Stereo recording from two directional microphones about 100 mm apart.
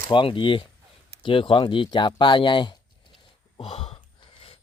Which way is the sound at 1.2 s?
60° left (ahead or behind).